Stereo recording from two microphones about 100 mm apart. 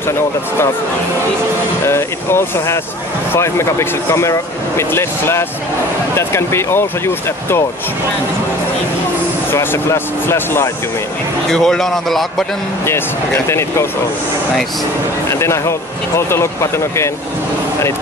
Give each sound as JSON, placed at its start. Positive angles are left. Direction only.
{"t": 1.9, "sound": "speech", "side_deg": 25}
{"t": 9.5, "sound": "speech", "side_deg": 25}
{"t": 11.5, "sound": "a man's voice", "side_deg": 5}
{"t": 12.8, "sound": "speech", "side_deg": 25}
{"t": 15.2, "sound": "speech", "side_deg": 30}